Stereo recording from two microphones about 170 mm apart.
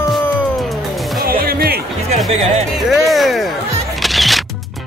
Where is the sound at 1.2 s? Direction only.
60° right (ahead or behind).